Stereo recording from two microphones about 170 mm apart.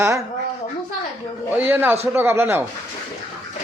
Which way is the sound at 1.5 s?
10° right (ahead or behind).